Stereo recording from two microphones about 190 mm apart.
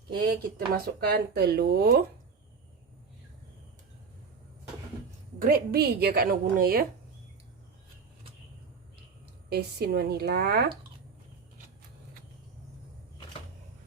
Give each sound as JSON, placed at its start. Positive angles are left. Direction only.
{"t": 0.3, "sound": "speech", "side_deg": -50}
{"t": 5.4, "sound": "a woman's voice", "side_deg": -50}
{"t": 9.5, "sound": "speech", "side_deg": -55}